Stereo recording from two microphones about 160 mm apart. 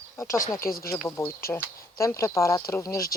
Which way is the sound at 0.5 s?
65° left (ahead or behind).